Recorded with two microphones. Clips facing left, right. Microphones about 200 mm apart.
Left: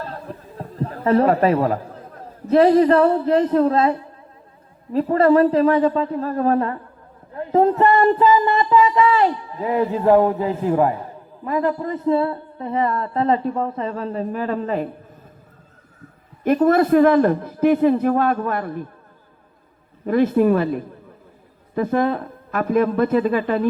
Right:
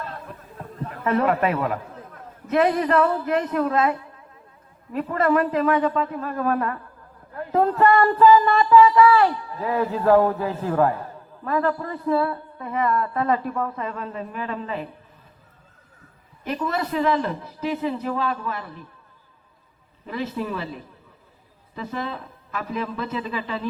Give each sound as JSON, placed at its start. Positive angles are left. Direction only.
{"t": 0.0, "sound": "a sound", "side_deg": 35}
{"t": 4.9, "sound": "speech", "side_deg": 30}
{"t": 16.4, "sound": "a man's voice", "side_deg": 50}
{"t": 20.1, "sound": "a man's voice", "side_deg": 50}